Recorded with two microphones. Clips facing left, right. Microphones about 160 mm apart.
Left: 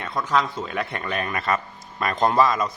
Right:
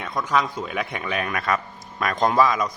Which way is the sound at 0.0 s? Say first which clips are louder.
Even; centre (ahead or behind).